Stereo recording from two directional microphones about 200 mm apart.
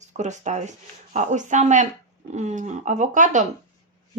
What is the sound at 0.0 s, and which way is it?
Speech, 35° right (ahead or behind).